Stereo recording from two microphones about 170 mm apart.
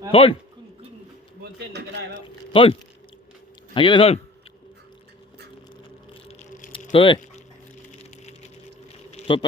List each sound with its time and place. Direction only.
0.1 s a man's voice: 35° left (ahead or behind)
2.5 s speech: 30° left (ahead or behind)
3.8 s a man's voice: 30° left (ahead or behind)
6.5 s squish: 50° left (ahead or behind)
6.9 s speech: 30° left (ahead or behind)
9.1 s a sound: 30° left (ahead or behind)